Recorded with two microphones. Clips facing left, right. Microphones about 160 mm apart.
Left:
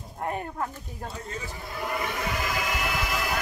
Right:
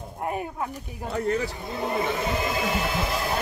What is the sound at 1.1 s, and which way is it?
Speech, 65° right (ahead or behind).